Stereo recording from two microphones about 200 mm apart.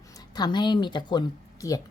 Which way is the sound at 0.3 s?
20° left (ahead or behind).